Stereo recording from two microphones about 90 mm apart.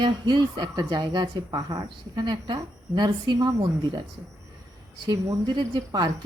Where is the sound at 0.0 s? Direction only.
55° right (ahead or behind).